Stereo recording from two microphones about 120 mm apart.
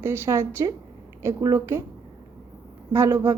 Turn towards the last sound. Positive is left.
turn(degrees=-25)  # may be behind; listen again after turning